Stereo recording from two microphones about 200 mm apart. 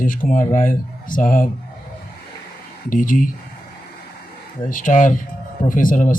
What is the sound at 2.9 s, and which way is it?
Speech, 40° left (ahead or behind).